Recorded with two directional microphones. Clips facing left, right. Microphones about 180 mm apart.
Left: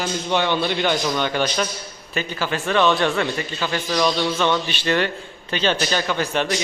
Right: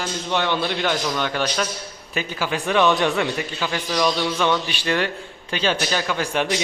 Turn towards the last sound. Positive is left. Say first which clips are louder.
# left 1 dB
turn(degrees=-10)  # may be behind; listen again after turning